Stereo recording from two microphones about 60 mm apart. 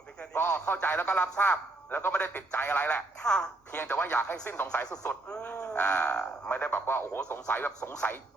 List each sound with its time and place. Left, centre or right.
0.3 s a man's voice: left
1.0 s speech: centre
1.4 s speech: left
3.2 s a woman's voice: centre
3.7 s speech: left
5.3 s a sound: centre
5.7 s speech: left